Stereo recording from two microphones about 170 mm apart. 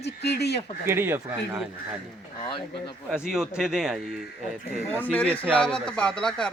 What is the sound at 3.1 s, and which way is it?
Speech, 5° right (ahead or behind).